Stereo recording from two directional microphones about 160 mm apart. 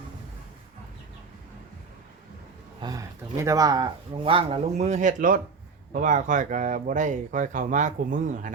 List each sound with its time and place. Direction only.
2.8 s speech: 20° right (ahead or behind); by 8.5 s 55° right (ahead or behind)